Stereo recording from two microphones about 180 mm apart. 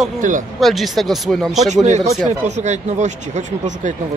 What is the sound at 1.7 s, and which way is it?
Speech, 40° right (ahead or behind).